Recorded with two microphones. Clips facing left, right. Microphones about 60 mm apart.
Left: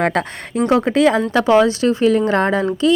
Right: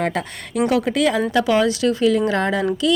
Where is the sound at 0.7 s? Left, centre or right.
Left.